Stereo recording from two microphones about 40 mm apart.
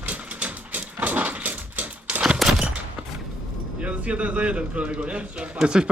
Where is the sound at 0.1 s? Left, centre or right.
Right.